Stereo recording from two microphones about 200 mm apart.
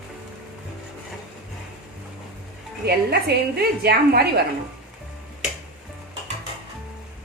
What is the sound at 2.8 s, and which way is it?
A woman's voice, 50° right (ahead or behind).